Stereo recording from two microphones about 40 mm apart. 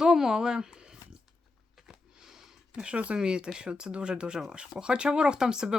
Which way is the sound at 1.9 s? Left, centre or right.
Centre.